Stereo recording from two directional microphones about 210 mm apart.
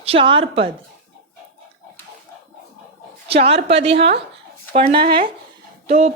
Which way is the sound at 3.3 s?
30° right (ahead or behind).